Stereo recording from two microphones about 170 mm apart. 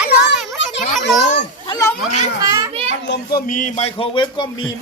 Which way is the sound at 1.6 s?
20° left (ahead or behind).